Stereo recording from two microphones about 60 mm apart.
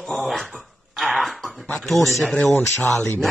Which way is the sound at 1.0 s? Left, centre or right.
Centre.